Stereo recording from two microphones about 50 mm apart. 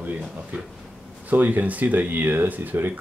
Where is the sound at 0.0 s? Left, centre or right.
Right.